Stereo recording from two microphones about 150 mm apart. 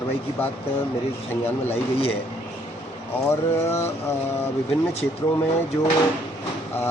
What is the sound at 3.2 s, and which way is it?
Mantra, 20° left (ahead or behind).